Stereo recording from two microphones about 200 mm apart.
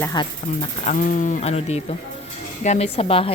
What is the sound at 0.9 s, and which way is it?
A woman's voice, 40° left (ahead or behind).